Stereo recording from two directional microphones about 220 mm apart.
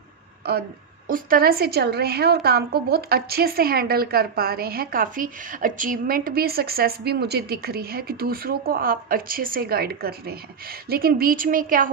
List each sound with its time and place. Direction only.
1.0 s a woman's voice: 40° right (ahead or behind)